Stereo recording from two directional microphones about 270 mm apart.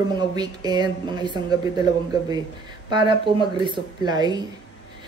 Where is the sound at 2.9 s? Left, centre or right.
Centre.